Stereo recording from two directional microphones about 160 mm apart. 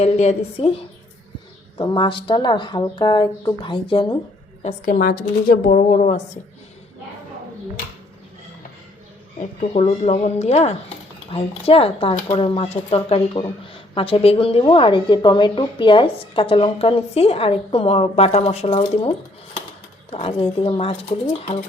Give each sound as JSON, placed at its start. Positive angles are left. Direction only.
{"t": 0.0, "sound": "a woman's voice", "side_deg": 40}
{"t": 4.9, "sound": "a woman's voice", "side_deg": 70}
{"t": 5.5, "sound": "speech", "side_deg": 60}
{"t": 9.4, "sound": "a woman's voice", "side_deg": 45}